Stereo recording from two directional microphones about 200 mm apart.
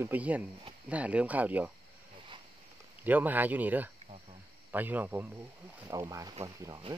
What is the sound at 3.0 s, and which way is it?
Speech, 10° right (ahead or behind).